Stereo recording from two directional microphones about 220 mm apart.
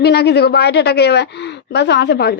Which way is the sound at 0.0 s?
45° left (ahead or behind).